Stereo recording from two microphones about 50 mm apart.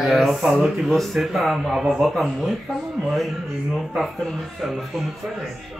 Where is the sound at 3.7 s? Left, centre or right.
Centre.